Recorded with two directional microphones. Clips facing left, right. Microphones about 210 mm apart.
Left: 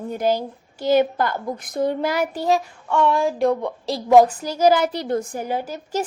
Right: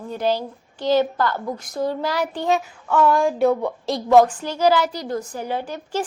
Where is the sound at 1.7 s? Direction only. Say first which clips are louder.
Left 3 dB; 20° left (ahead or behind).